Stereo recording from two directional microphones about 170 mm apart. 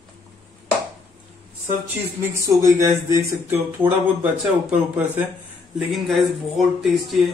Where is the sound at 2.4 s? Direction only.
20° right (ahead or behind).